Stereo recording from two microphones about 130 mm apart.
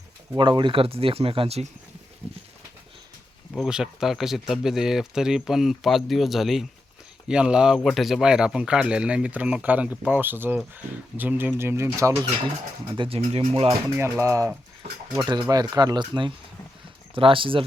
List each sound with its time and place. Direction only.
0.3 s speech: 40° right (ahead or behind)
3.5 s speech: 5° right (ahead or behind); by 12.1 s 20° right (ahead or behind)
13.0 s speech: 45° right (ahead or behind)
13.9 s speech: 20° right (ahead or behind)
15.2 s speech: 35° right (ahead or behind)